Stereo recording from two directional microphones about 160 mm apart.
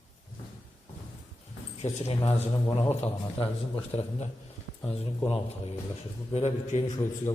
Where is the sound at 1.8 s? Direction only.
40° left (ahead or behind).